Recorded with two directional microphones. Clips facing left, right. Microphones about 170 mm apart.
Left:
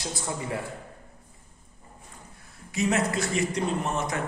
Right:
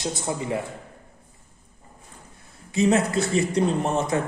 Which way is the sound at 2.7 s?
25° right (ahead or behind).